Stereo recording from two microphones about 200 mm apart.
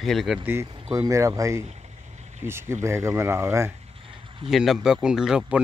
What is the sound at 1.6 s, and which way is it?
Vehicle, 35° right (ahead or behind).